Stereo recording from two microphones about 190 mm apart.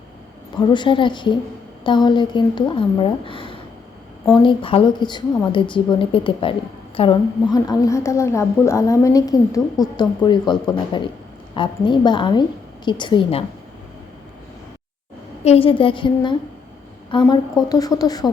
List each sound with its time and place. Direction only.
0.5 s a woman's voice: 25° left (ahead or behind)
15.4 s a woman's voice: 30° left (ahead or behind)